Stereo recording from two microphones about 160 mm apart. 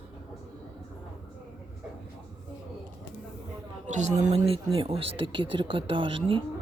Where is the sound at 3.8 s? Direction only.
50° right (ahead or behind).